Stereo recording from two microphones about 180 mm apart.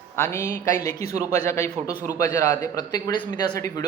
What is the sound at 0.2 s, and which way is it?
A man's voice, 15° left (ahead or behind).